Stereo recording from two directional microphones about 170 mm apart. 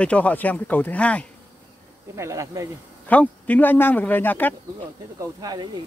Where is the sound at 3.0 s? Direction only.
10° left (ahead or behind).